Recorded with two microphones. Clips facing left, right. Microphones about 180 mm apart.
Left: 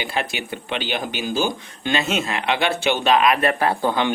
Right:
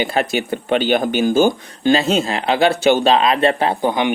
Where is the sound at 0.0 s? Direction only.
45° right (ahead or behind).